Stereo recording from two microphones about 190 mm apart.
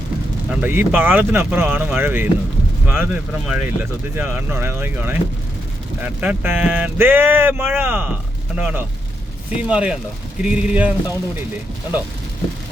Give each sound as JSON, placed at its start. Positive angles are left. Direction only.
{"t": 0.5, "sound": "speech", "side_deg": -10}